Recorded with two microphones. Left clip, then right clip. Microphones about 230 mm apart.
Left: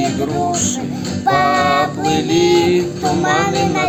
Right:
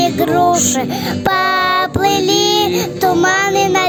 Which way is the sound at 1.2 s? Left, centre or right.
Right.